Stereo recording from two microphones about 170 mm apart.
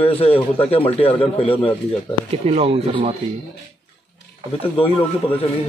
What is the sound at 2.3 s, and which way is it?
Speech, 35° right (ahead or behind).